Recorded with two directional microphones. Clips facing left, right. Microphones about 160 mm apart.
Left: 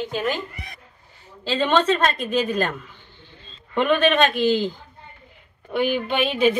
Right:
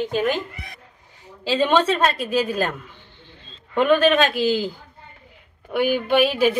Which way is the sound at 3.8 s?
Centre (ahead or behind).